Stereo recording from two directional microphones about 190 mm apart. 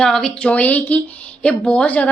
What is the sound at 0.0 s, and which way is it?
Speech, 5° left (ahead or behind).